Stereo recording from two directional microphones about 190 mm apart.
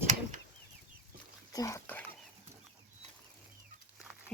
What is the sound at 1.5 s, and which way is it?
Speech, 15° left (ahead or behind).